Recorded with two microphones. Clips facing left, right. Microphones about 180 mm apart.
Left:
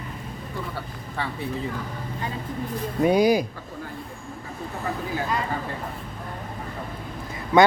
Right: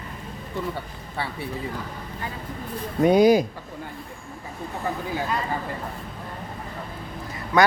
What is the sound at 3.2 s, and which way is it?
Speech, 45° right (ahead or behind).